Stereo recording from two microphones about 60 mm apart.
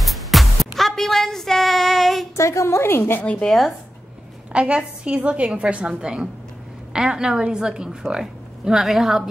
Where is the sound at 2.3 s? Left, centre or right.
Left.